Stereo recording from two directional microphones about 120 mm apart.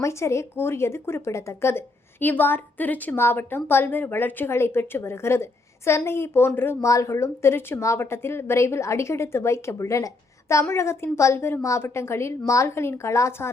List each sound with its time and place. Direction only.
0.0 s speech: 25° left (ahead or behind)